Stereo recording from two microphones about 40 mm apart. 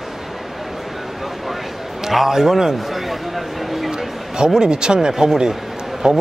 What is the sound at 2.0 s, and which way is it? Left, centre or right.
Speech, centre.